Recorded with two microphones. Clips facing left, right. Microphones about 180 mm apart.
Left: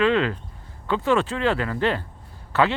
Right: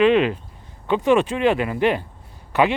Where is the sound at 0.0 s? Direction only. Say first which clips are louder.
Right 4 dB; 20° right (ahead or behind).